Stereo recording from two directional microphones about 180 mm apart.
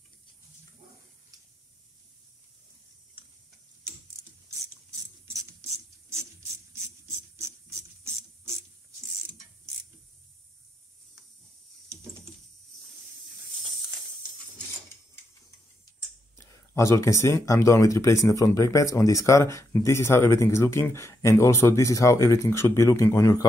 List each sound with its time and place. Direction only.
5.2 s a sound: 15° right (ahead or behind)
6.7 s filing: 15° right (ahead or behind)
16.3 s speech: 15° left (ahead or behind)